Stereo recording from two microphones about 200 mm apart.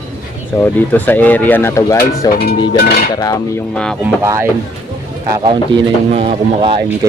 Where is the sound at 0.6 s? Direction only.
10° left (ahead or behind).